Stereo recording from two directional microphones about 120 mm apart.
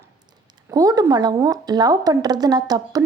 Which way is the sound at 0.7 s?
30° right (ahead or behind).